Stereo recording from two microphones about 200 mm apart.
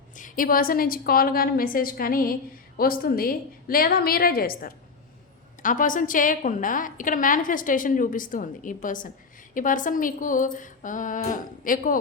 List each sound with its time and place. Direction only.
0.2 s a woman's voice: 40° left (ahead or behind)